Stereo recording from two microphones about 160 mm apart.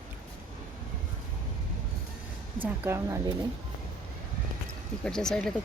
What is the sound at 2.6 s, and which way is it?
Speech, 15° right (ahead or behind).